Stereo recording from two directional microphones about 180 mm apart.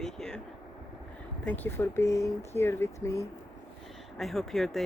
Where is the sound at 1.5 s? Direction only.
10° left (ahead or behind).